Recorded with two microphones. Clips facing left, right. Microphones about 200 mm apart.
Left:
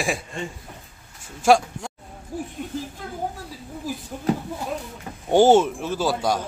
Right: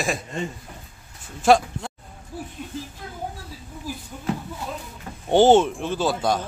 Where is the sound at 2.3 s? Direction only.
45° left (ahead or behind).